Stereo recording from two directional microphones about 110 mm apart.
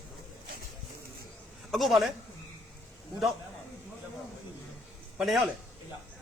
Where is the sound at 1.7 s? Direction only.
Centre (ahead or behind).